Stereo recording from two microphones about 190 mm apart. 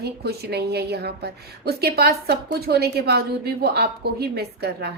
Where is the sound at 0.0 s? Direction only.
60° right (ahead or behind).